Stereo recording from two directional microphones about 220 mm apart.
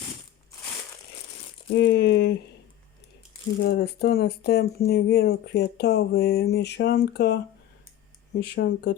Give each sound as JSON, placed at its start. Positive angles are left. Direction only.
{"t": 1.7, "sound": "speech", "side_deg": 50}
{"t": 3.6, "sound": "speech", "side_deg": 45}